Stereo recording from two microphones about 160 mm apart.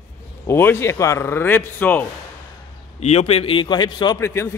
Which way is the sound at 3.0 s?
40° left (ahead or behind).